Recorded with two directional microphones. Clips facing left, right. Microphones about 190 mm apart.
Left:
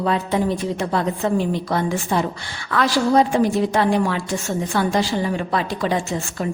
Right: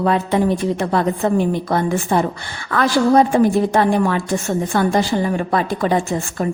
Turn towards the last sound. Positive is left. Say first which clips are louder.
# right 4 dB
turn(degrees=-50)  # may be behind; listen again after turning